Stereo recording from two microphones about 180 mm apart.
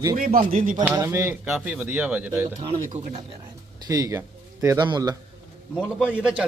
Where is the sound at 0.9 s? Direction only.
15° right (ahead or behind).